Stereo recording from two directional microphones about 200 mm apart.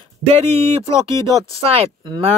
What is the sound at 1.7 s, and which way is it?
Speech, 25° right (ahead or behind).